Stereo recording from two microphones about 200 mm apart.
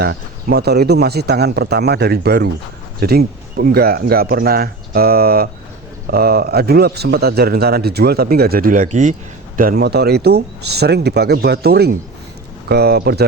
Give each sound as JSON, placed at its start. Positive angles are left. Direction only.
{"t": 0.0, "sound": "a man's voice", "side_deg": -50}
{"t": 9.6, "sound": "a man's voice", "side_deg": -50}